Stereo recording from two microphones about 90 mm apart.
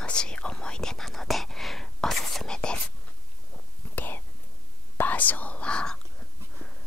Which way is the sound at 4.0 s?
20° left (ahead or behind).